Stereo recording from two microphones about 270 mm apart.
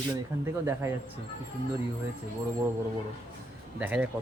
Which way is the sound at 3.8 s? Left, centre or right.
Centre.